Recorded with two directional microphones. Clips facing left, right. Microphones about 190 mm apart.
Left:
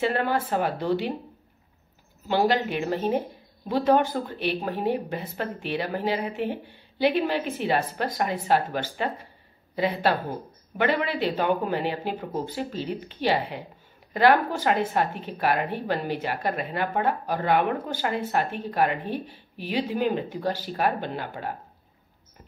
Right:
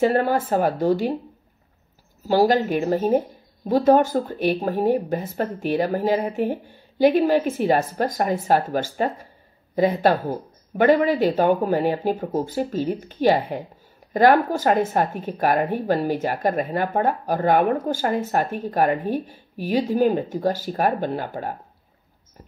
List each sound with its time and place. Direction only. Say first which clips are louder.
0.0 s a woman's voice: right 6 dB; 45° right (ahead or behind)
2.2 s a woman's voice: right 5 dB; 40° right (ahead or behind)